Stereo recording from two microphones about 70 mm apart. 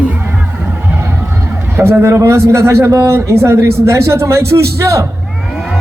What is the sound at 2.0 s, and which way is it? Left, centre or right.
Speech, right.